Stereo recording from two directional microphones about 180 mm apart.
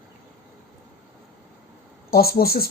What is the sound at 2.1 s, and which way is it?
Speech, 55° left (ahead or behind).